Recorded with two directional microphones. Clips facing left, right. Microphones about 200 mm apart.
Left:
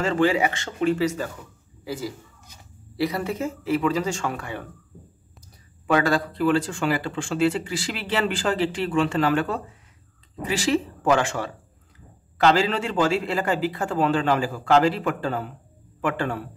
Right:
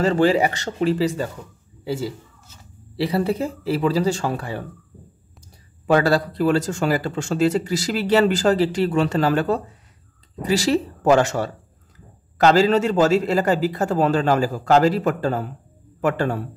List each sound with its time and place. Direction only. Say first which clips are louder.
0.0 s speech: right 4 dB; 35° right (ahead or behind)
5.9 s speech: right 4 dB; 35° right (ahead or behind)